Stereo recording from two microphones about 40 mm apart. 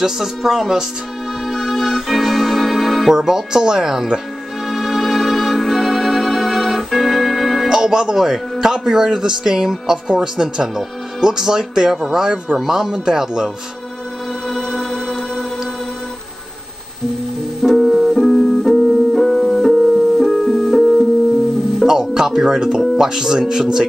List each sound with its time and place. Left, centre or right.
0.0 s a man's voice: centre
1.5 s music: centre
3.1 s a man's voice: centre
4.6 s music: centre
7.7 s a man's voice: centre
14.5 s music: centre
17.6 s music: centre
18.2 s piano: centre
20.2 s music: centre
21.8 s music: centre
23.0 s a man's voice: centre